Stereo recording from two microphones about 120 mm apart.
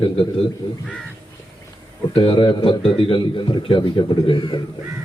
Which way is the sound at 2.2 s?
45° left (ahead or behind).